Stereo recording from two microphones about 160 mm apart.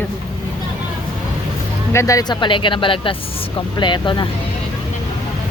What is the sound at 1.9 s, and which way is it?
Speech, 20° left (ahead or behind).